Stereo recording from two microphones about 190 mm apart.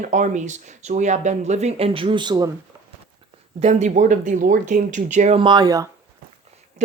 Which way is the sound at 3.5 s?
40° right (ahead or behind).